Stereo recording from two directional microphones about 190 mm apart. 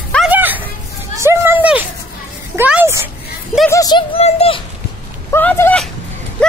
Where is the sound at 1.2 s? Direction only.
15° right (ahead or behind).